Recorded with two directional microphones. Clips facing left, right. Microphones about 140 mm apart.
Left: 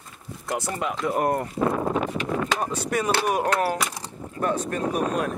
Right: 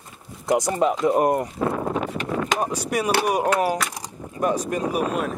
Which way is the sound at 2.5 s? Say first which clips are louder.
Right 2 dB; 15° right (ahead or behind).